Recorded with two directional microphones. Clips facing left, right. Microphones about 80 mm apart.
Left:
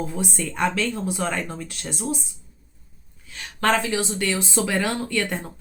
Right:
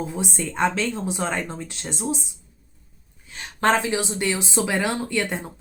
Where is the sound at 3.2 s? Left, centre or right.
Right.